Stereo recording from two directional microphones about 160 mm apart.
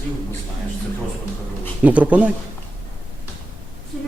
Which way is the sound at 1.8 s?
10° right (ahead or behind).